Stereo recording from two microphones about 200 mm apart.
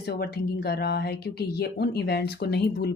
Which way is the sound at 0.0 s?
55° left (ahead or behind).